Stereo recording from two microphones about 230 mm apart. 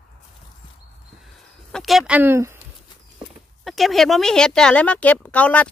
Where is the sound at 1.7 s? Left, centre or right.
Centre.